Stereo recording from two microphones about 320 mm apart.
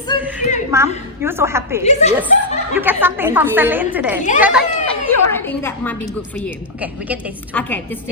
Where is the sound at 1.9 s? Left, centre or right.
Left.